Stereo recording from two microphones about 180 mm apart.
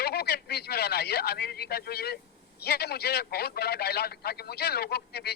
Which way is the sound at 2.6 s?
65° left (ahead or behind).